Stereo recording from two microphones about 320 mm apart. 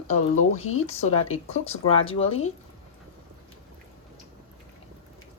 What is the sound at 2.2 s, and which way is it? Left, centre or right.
Speech, left.